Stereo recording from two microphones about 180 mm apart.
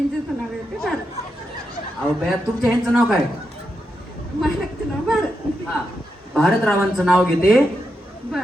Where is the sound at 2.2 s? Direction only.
Centre (ahead or behind).